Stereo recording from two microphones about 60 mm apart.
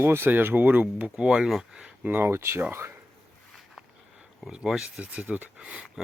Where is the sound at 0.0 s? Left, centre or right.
Right; by 1.5 s centre.